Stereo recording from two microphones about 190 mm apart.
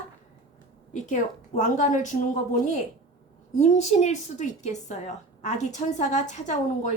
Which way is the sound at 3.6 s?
35° left (ahead or behind).